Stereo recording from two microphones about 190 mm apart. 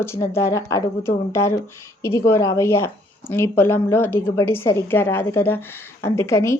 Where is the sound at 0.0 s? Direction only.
15° left (ahead or behind).